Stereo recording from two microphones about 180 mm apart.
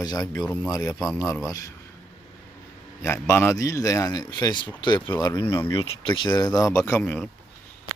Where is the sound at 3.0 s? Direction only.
15° left (ahead or behind).